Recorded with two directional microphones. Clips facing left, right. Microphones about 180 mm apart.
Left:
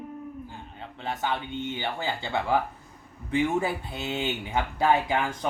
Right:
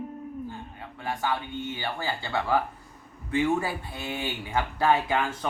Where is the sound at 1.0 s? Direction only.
20° left (ahead or behind).